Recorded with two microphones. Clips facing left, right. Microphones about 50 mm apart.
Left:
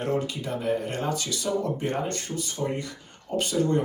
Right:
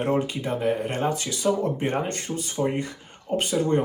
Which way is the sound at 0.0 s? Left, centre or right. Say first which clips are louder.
Right 3 dB; right.